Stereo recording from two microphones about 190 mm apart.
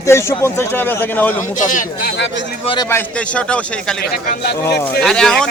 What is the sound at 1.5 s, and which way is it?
Speech, 40° left (ahead or behind).